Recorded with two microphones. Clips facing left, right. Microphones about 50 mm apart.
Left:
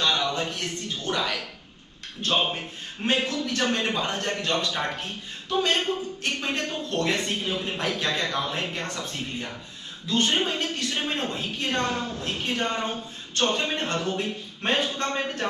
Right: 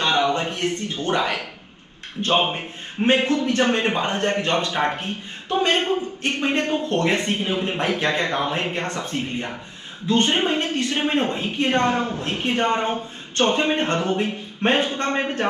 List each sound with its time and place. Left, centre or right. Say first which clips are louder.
0.0 s a man's voice: right 5 dB; right